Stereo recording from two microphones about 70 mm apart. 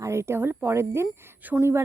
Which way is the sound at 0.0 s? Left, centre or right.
Right.